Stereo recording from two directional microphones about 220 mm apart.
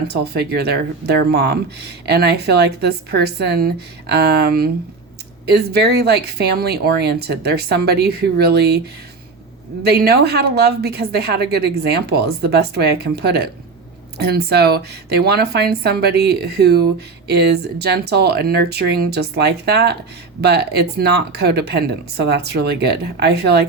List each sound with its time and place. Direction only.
0.1 s speech: 50° right (ahead or behind)
9.8 s speech: 45° right (ahead or behind)